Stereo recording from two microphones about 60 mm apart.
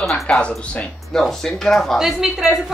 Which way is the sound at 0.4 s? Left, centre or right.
Centre.